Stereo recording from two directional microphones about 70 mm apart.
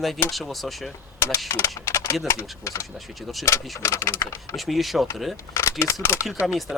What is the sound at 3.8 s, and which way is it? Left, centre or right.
Speech, left.